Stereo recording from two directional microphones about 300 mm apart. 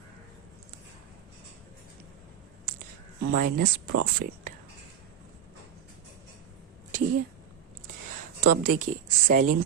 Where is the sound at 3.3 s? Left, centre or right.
Right.